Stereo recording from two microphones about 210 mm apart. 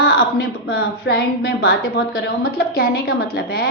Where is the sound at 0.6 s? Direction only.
50° left (ahead or behind).